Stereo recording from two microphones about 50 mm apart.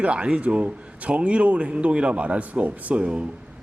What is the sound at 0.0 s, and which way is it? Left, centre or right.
A man's voice, right.